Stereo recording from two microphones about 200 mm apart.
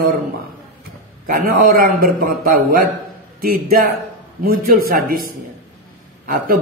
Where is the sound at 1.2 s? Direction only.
45° right (ahead or behind).